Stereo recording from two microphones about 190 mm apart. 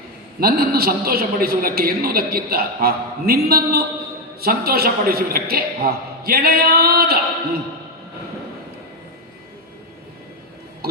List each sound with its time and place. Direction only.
0.3 s a man's voice: 50° right (ahead or behind)